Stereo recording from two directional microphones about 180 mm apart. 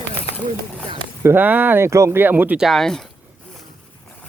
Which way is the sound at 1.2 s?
10° right (ahead or behind).